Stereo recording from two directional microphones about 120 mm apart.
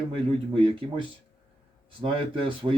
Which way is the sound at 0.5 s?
50° right (ahead or behind).